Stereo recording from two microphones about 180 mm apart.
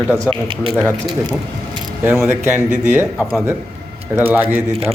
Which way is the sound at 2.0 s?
15° right (ahead or behind).